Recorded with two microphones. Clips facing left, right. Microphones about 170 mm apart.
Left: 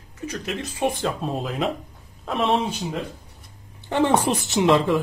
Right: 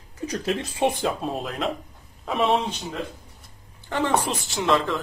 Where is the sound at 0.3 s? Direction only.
30° right (ahead or behind).